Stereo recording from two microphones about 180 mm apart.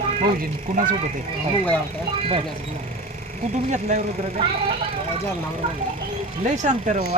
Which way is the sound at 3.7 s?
40° right (ahead or behind).